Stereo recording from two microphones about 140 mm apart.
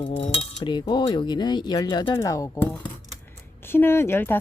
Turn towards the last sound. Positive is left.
turn(degrees=15)  # may be behind; listen again after turning